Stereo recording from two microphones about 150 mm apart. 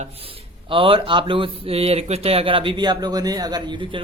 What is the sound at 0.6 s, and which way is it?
Speech, 35° right (ahead or behind).